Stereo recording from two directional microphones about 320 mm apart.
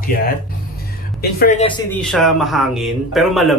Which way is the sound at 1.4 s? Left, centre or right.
Left.